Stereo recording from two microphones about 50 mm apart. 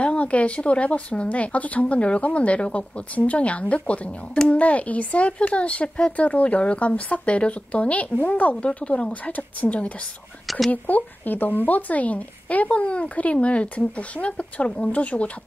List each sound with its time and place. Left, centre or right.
0.0 s speech: left
10.4 s speech: centre
10.7 s speech: left